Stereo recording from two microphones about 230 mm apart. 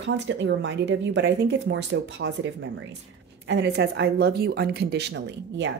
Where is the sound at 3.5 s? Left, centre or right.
Right.